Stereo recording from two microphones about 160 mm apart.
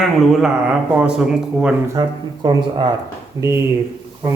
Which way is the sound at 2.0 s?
25° right (ahead or behind).